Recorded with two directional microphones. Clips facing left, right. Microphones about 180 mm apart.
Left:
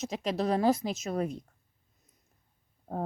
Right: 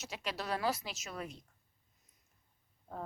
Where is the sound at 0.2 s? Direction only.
40° left (ahead or behind).